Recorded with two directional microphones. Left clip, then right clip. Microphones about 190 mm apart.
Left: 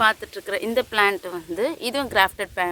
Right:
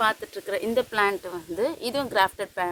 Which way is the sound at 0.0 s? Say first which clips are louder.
Left 4 dB; 5° right (ahead or behind).